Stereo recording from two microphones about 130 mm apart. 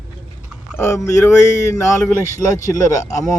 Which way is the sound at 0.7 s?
20° left (ahead or behind).